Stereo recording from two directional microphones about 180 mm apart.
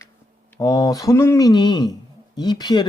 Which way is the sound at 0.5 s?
20° left (ahead or behind).